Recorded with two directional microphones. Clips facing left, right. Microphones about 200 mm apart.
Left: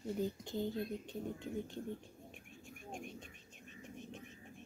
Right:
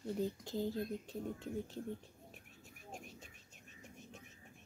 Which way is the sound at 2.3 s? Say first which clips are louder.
Left 5 dB; centre (ahead or behind).